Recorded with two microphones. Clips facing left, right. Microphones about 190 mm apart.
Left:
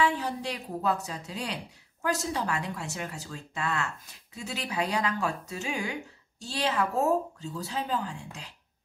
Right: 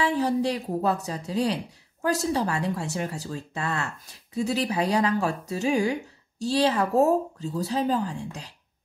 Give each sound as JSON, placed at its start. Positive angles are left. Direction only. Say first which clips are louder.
{"t": 0.0, "sound": "speech", "louder": "right 5 dB", "side_deg": -35}